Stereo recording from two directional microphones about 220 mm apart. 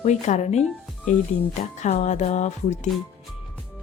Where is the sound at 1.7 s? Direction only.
30° left (ahead or behind).